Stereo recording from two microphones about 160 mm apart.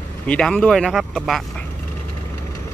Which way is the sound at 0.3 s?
5° left (ahead or behind).